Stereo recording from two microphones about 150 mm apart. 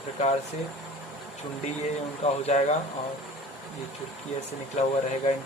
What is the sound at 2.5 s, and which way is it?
Speech, 45° left (ahead or behind).